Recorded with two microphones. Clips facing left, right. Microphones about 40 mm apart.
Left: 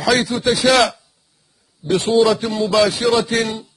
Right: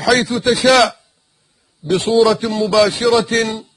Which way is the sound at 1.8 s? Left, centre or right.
Left.